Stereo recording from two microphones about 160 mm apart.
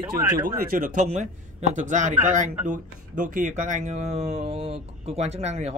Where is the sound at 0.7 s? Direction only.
55° right (ahead or behind).